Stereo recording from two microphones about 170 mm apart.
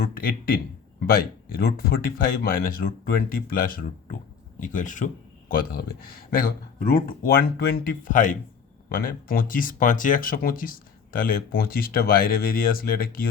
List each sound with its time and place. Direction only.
0.0 s speech: 60° left (ahead or behind)